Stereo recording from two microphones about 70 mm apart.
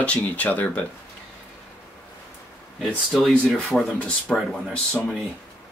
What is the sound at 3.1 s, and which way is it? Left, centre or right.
Speech, centre.